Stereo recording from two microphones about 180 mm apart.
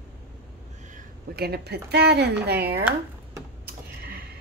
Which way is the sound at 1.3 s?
60° right (ahead or behind).